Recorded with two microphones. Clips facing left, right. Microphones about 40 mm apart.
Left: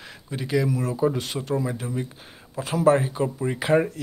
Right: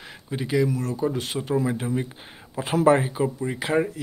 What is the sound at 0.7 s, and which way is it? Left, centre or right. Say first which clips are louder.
Speech: left 2 dB; centre.